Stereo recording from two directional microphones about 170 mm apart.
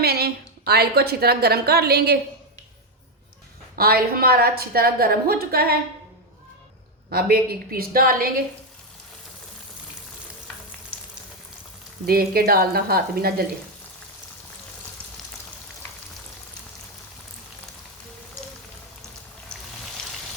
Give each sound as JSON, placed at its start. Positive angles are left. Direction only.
{"t": 0.0, "sound": "a woman's voice", "side_deg": -65}
{"t": 3.8, "sound": "a woman's voice", "side_deg": -65}
{"t": 7.1, "sound": "a woman's voice", "side_deg": -65}
{"t": 12.0, "sound": "a woman's voice", "side_deg": -60}